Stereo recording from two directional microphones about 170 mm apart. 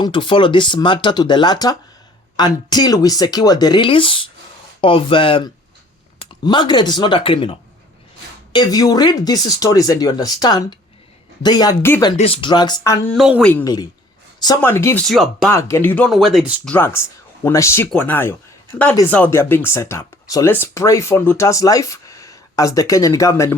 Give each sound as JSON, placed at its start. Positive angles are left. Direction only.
{"t": 0.0, "sound": "speech", "side_deg": 30}
{"t": 8.5, "sound": "speech", "side_deg": 25}
{"t": 12.1, "sound": "speech", "side_deg": 35}
{"t": 13.1, "sound": "speech", "side_deg": -5}
{"t": 13.4, "sound": "speech", "side_deg": 10}
{"t": 14.3, "sound": "speech", "side_deg": 25}
{"t": 15.0, "sound": "speech", "side_deg": 0}
{"t": 15.5, "sound": "speech", "side_deg": 15}
{"t": 16.0, "sound": "speech", "side_deg": 0}
{"t": 16.6, "sound": "speech", "side_deg": 10}